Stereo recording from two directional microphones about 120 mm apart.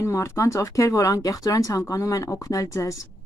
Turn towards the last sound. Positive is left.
turn(degrees=25)  # may be behind; listen again after turning